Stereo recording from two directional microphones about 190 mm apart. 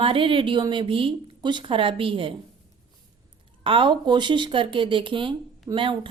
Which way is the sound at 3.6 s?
25° right (ahead or behind).